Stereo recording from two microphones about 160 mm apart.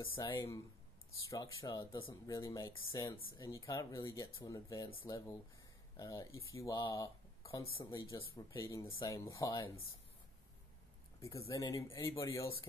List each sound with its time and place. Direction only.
0.0 s speech: 30° left (ahead or behind)
8.8 s speech: 35° left (ahead or behind)
9.1 s speech: 20° left (ahead or behind)
11.1 s speech: 20° left (ahead or behind)